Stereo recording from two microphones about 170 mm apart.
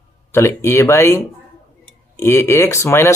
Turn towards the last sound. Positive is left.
turn(degrees=15)  # may be behind; listen again after turning